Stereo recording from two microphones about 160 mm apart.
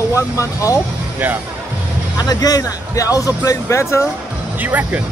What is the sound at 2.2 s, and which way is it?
Speech, 25° left (ahead or behind).